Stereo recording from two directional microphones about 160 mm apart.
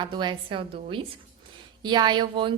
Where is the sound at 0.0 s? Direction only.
30° right (ahead or behind).